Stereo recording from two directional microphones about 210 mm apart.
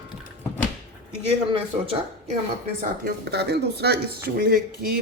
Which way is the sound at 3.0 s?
50° right (ahead or behind).